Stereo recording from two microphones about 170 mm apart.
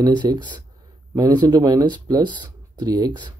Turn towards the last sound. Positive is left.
turn(degrees=-25)  # may be behind; listen again after turning